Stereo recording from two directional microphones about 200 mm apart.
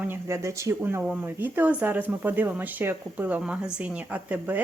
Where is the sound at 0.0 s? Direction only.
10° right (ahead or behind).